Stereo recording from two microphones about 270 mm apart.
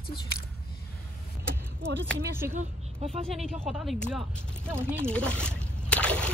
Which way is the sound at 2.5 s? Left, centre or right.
Right.